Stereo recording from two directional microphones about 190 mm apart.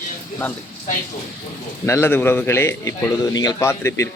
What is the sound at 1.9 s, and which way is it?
A man's voice, 15° left (ahead or behind).